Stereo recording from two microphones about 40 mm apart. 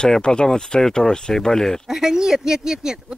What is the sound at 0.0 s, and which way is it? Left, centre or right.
Speech, centre.